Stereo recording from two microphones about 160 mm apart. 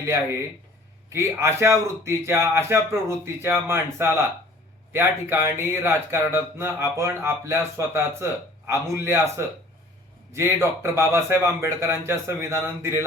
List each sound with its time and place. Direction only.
1.1 s speech: 15° right (ahead or behind)
10.3 s speech: 15° right (ahead or behind)